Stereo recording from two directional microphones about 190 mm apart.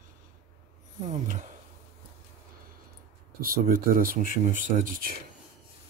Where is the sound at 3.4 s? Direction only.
50° right (ahead or behind).